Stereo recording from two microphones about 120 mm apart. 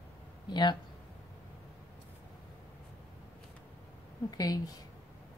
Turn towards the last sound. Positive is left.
turn(degrees=30)  # may be behind; listen again after turning